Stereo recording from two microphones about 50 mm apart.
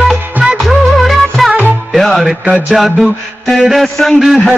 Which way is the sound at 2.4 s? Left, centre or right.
Right.